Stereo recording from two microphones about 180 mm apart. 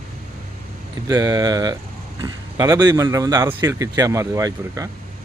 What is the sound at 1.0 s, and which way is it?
Speech, 20° right (ahead or behind).